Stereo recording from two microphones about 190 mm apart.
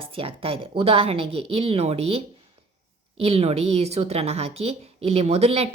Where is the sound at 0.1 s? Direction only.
30° right (ahead or behind).